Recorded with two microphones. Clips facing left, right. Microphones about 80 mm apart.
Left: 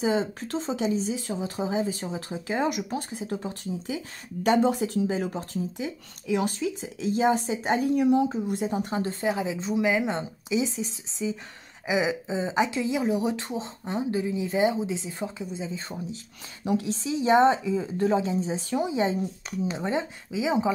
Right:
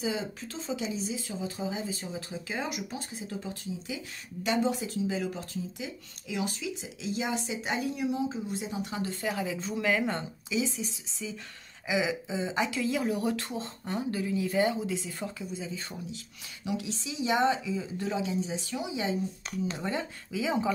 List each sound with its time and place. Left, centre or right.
0.4 s a woman's voice: left
0.7 s a woman's voice: left
9.3 s speech: left
19.7 s speech: left